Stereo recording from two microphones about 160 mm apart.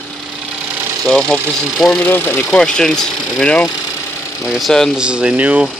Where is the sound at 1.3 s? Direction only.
5° left (ahead or behind).